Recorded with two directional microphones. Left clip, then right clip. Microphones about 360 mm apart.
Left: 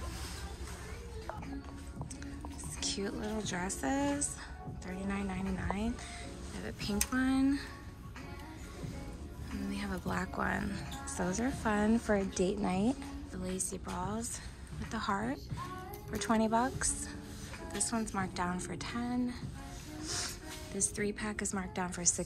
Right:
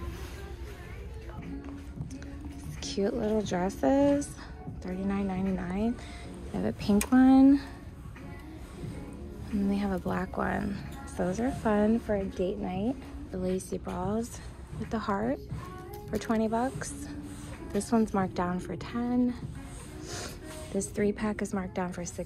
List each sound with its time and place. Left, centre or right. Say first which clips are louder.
2.8 s speech: right 7 dB; centre
9.7 s a woman's voice: right 6 dB; centre